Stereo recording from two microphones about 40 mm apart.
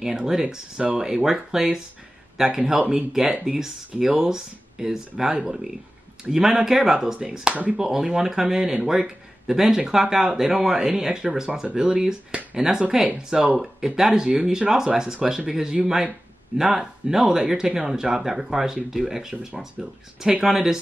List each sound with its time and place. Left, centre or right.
0.2 s speech: centre